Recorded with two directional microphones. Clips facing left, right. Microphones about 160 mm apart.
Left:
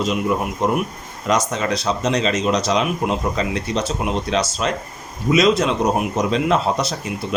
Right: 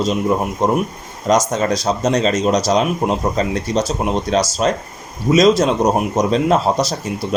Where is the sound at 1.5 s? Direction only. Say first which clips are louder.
Right 4 dB; 40° right (ahead or behind).